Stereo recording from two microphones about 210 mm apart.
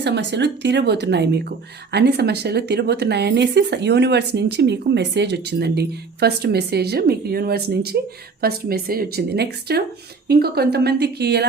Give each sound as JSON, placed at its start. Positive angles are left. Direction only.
{"t": 0.0, "sound": "speech", "side_deg": -55}